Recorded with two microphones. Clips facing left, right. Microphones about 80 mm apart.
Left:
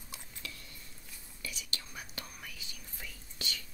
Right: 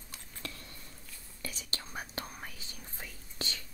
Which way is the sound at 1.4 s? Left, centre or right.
Right.